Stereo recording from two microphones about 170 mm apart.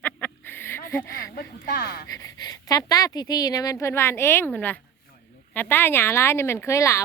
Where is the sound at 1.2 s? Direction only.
65° left (ahead or behind).